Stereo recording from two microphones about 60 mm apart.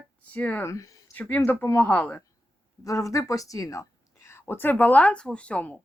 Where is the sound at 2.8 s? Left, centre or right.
Left.